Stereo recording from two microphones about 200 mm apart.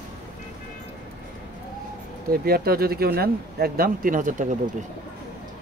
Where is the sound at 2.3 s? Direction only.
50° right (ahead or behind).